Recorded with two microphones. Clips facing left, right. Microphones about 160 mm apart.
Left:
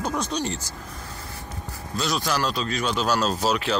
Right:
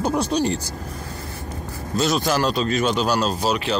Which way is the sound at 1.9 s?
45° right (ahead or behind).